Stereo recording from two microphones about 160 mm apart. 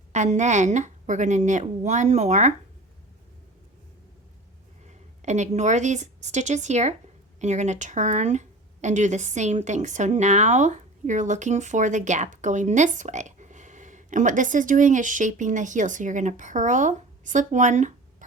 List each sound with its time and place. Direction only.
0.1 s speech: 50° right (ahead or behind)
4.9 s a woman's voice: 45° right (ahead or behind)